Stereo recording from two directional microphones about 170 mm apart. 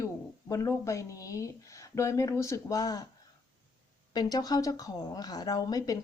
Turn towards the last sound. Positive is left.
turn(degrees=20)  # may be behind; listen again after turning